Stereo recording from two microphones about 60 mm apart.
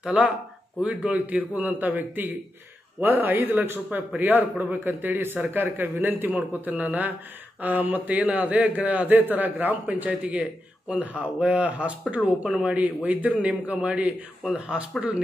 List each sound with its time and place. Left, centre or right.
0.0 s a man's voice: centre